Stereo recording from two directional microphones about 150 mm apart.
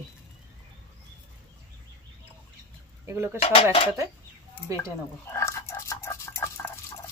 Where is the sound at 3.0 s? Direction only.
15° right (ahead or behind).